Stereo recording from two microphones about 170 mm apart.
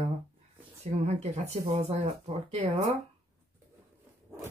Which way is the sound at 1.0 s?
40° right (ahead or behind).